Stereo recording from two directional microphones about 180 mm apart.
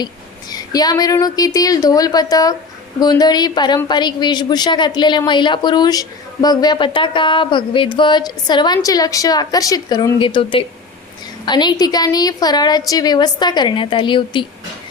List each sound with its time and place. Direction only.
0.5 s a woman's voice: 20° left (ahead or behind)